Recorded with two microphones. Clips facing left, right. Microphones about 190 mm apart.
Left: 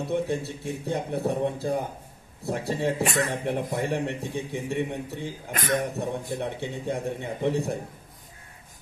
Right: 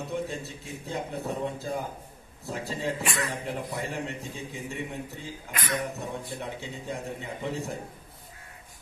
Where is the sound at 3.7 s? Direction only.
60° left (ahead or behind).